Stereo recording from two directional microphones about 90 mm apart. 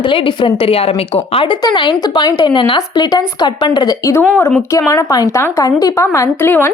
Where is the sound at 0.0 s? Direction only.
70° left (ahead or behind); by 1.5 s 85° left.